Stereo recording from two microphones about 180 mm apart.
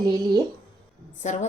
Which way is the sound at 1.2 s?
40° left (ahead or behind).